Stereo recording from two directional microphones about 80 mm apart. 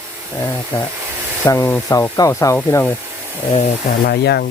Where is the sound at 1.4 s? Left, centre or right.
Left.